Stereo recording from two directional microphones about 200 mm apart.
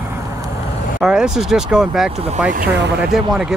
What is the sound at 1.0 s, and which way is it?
Speech, 5° right (ahead or behind).